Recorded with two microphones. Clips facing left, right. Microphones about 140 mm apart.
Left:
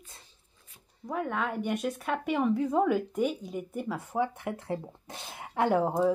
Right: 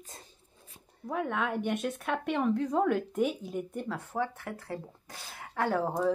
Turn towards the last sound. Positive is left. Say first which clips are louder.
# left 4 dB
turn(degrees=15)  # may be behind; listen again after turning